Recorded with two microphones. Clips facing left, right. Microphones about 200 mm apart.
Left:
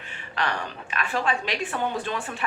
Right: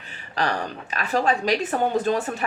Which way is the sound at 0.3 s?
35° right (ahead or behind).